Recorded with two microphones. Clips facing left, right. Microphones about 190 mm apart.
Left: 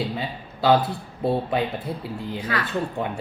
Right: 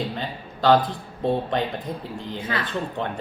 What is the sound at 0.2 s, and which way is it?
Speech, 10° left (ahead or behind).